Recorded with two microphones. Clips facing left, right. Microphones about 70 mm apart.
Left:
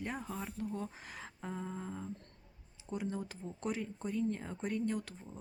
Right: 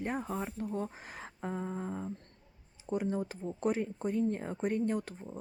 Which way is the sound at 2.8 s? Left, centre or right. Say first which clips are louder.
Right 6 dB; right.